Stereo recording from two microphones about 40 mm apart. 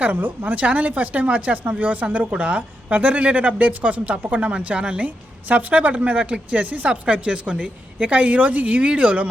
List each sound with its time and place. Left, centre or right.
0.0 s speech: right
0.5 s a woman's voice: right
5.0 s a woman's voice: right
6.9 s speech: right
7.9 s a woman's voice: right
8.9 s speech: right